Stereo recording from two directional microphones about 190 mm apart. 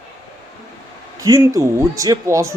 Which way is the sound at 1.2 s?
15° right (ahead or behind).